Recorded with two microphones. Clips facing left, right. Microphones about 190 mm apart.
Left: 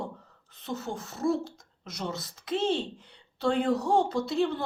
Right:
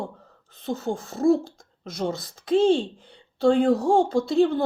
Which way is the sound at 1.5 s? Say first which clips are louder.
Right 7 dB; 45° right (ahead or behind).